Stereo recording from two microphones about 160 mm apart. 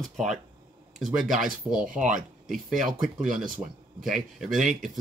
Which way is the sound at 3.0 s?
Centre (ahead or behind).